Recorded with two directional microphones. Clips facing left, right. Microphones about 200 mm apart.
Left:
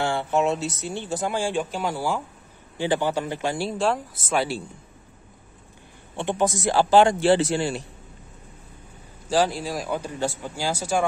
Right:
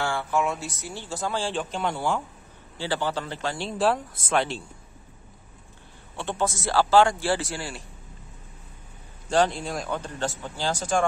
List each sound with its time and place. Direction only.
0.0 s speech: 20° left (ahead or behind); by 2.2 s 5° left (ahead or behind)
2.8 s a man's voice: 15° left (ahead or behind)
3.7 s a man's voice: centre (ahead or behind)
6.1 s speech: 15° left (ahead or behind)
9.3 s a man's voice: 5° left (ahead or behind)